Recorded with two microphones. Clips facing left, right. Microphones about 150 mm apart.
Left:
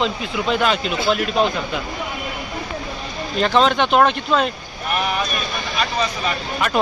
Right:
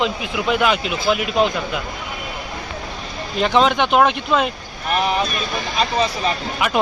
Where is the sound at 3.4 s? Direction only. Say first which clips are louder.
Even; 10° right (ahead or behind).